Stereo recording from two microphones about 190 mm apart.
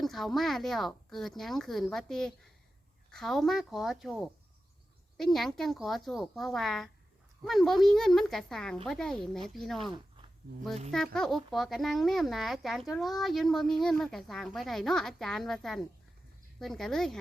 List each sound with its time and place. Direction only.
0.0 s speech: centre (ahead or behind)
10.9 s speech: 5° left (ahead or behind)